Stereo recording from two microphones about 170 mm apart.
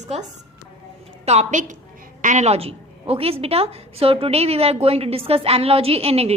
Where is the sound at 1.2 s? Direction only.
40° right (ahead or behind).